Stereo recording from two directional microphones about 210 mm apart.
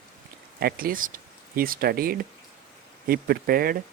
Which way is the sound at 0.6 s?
40° right (ahead or behind).